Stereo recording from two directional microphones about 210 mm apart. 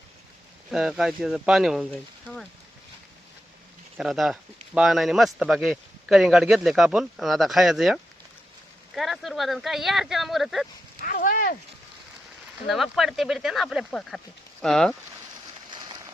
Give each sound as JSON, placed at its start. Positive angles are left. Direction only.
{"t": 0.7, "sound": "speech", "side_deg": 0}
{"t": 3.9, "sound": "speech", "side_deg": 0}
{"t": 9.0, "sound": "speech", "side_deg": 0}
{"t": 11.0, "sound": "a sound", "side_deg": 40}
{"t": 12.6, "sound": "speech", "side_deg": 0}